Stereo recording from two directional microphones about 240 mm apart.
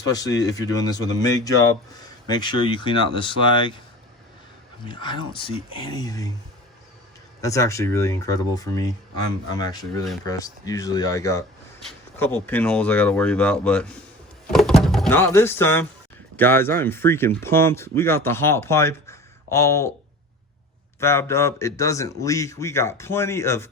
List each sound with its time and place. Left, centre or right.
0.1 s speech: centre
4.9 s speech: centre
7.4 s speech: centre
21.0 s speech: centre